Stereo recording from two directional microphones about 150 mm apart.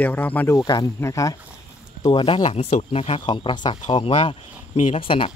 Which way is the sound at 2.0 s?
35° left (ahead or behind).